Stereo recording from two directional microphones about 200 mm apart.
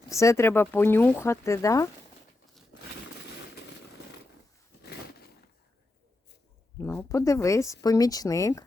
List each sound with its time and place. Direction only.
0.1 s speech: 15° left (ahead or behind)
6.7 s speech: 10° left (ahead or behind)